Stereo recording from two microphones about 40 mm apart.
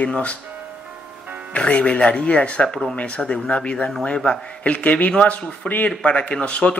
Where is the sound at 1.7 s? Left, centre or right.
Left.